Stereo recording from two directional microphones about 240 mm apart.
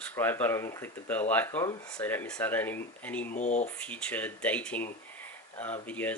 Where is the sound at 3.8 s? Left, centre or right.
Centre.